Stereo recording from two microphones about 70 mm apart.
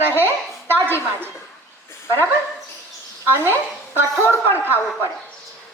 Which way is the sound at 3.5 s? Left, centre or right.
Left.